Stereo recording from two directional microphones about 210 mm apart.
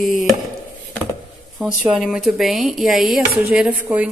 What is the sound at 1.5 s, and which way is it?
A woman's voice, 5° right (ahead or behind).